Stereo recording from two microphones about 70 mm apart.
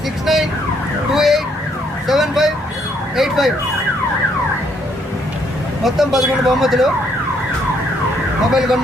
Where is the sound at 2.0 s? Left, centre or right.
Centre.